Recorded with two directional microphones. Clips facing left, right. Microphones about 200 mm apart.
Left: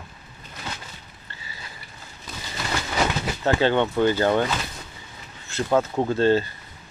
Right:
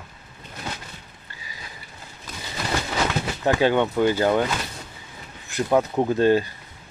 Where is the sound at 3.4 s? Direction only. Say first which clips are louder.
Right 1 dB; 15° right (ahead or behind).